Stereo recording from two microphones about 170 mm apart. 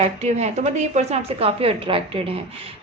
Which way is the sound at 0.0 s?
40° right (ahead or behind).